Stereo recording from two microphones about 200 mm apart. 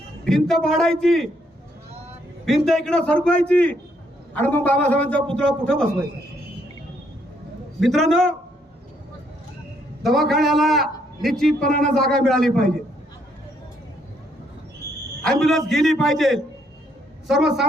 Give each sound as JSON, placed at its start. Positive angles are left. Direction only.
{"t": 0.3, "sound": "a man's voice", "side_deg": 0}
{"t": 2.4, "sound": "a man's voice", "side_deg": 0}
{"t": 7.8, "sound": "a man's voice", "side_deg": 0}
{"t": 10.0, "sound": "a man's voice", "side_deg": 0}
{"t": 15.2, "sound": "a man's voice", "side_deg": 0}